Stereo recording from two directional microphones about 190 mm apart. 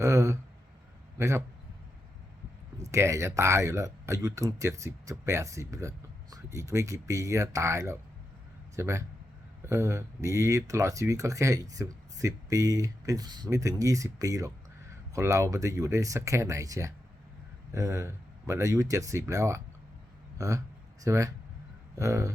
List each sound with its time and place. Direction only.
0.0 s a sound: 15° right (ahead or behind)
1.2 s speech: 15° right (ahead or behind)
2.7 s speech: 15° right (ahead or behind)